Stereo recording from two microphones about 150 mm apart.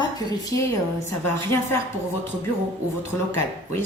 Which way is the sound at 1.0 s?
15° left (ahead or behind).